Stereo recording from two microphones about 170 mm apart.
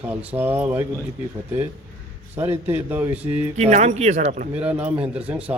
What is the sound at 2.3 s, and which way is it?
A man's voice, 15° right (ahead or behind).